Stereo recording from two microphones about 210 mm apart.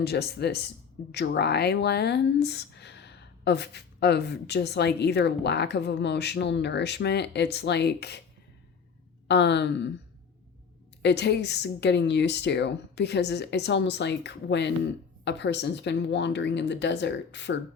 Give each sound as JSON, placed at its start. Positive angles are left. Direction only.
{"t": 0.0, "sound": "speech", "side_deg": 50}
{"t": 9.2, "sound": "speech", "side_deg": 55}
{"t": 11.0, "sound": "speech", "side_deg": 55}